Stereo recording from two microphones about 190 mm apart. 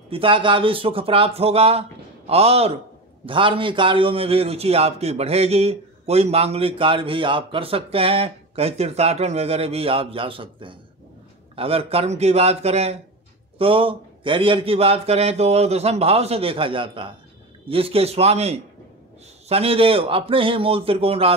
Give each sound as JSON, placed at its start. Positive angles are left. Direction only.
{"t": 0.1, "sound": "a man's voice", "side_deg": -25}